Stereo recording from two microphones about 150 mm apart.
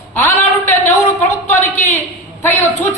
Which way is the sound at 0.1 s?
15° left (ahead or behind).